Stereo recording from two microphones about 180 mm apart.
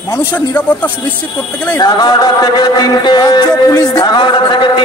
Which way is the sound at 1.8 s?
20° left (ahead or behind).